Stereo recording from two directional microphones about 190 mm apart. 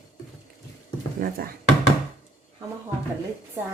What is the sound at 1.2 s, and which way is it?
Speech, 50° right (ahead or behind).